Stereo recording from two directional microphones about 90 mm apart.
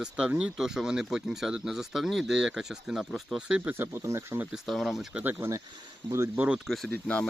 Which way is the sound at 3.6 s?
25° right (ahead or behind).